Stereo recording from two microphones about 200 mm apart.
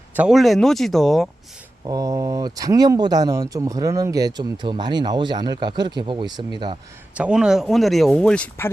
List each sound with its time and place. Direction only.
0.2 s speech: centre (ahead or behind)
1.9 s speech: 15° right (ahead or behind)
7.1 s speech: 5° right (ahead or behind)